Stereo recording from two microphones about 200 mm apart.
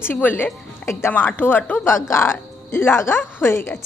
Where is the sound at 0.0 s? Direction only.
10° left (ahead or behind).